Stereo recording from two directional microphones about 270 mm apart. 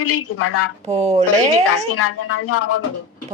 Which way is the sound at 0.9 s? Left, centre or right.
Right.